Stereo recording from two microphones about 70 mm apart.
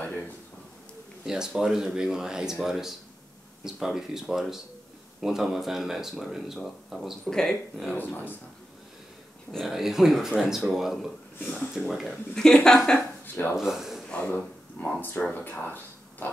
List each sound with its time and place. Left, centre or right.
0.0 s a sound: left
1.2 s speech: centre
7.9 s speech: left
9.5 s speech: centre
13.2 s speech: left
13.6 s speech: centre
14.0 s speech: centre
14.8 s speech: left